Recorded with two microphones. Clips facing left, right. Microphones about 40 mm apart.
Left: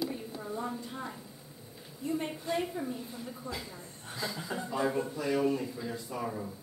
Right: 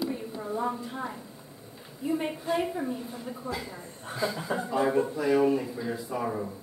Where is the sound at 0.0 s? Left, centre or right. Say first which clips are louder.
Right 4 dB; centre.